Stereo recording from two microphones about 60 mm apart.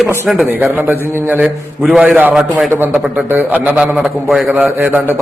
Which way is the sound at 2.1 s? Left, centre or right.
Right.